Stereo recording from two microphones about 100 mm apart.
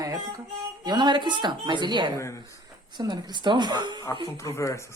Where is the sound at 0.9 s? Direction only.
45° right (ahead or behind).